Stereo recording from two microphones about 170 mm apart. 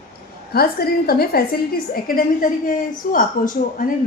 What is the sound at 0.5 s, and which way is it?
A woman's voice, 65° left (ahead or behind).